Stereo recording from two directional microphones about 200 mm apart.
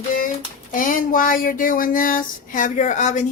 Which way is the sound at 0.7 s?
40° left (ahead or behind).